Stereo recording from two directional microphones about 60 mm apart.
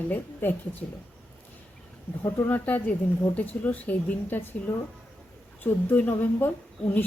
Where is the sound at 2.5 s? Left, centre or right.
Left.